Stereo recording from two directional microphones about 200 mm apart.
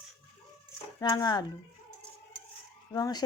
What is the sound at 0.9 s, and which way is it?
Speech, 20° left (ahead or behind).